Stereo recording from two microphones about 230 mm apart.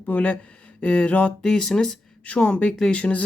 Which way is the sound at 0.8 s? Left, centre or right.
Centre.